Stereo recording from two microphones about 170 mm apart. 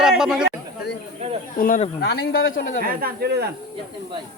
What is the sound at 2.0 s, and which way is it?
Speech, 70° left (ahead or behind).